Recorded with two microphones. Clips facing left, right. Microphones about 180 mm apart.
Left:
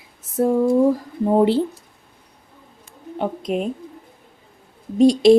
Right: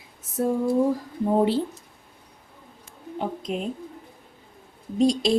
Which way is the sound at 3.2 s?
60° left (ahead or behind).